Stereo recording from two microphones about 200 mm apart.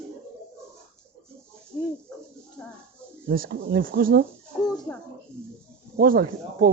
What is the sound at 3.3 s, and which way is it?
Speech, 50° right (ahead or behind).